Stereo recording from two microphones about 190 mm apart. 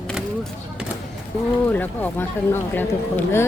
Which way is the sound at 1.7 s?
10° left (ahead or behind).